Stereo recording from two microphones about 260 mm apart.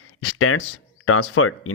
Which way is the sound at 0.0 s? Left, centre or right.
Left.